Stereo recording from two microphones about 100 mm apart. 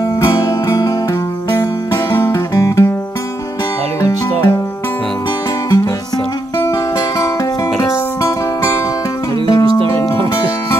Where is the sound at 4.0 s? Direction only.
35° left (ahead or behind).